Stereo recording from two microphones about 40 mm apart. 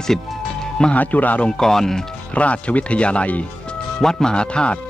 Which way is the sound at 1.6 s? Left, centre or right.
Centre.